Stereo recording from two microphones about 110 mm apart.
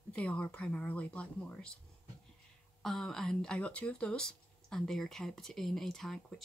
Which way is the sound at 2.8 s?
5° left (ahead or behind).